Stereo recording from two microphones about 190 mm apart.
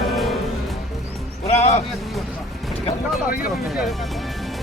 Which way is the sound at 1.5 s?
35° left (ahead or behind).